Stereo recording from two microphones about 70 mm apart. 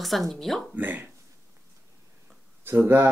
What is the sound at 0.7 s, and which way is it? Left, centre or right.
Speech, right.